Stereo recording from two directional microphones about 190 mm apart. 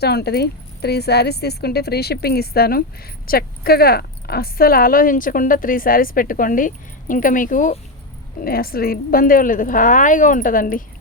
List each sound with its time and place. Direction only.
0.0 s speech: 60° left (ahead or behind)